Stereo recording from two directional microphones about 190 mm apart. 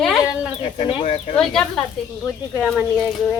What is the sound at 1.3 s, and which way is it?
Speech, 5° left (ahead or behind).